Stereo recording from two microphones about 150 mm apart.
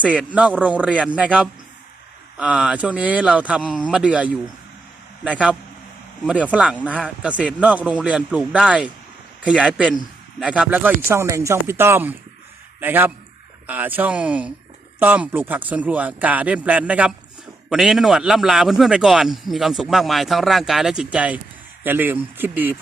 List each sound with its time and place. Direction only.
0.0 s a man's voice: 10° right (ahead or behind)